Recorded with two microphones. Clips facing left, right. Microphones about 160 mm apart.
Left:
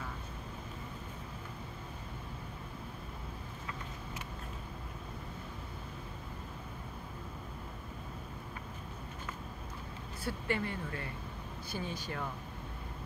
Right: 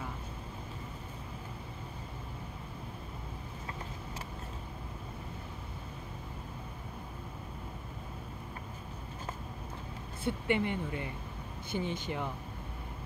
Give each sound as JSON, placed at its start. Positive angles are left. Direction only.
{"t": 10.2, "sound": "speech", "side_deg": -20}